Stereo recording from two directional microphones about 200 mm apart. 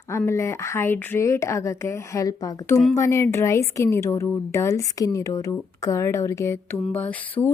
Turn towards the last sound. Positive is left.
turn(degrees=10)  # may be behind; listen again after turning